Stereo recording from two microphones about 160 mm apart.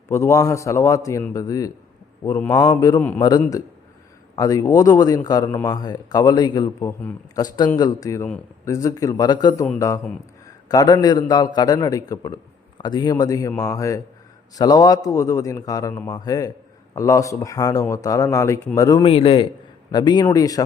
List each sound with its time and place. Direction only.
0.1 s a man's voice: 20° left (ahead or behind)
19.0 s a man's voice: 35° left (ahead or behind)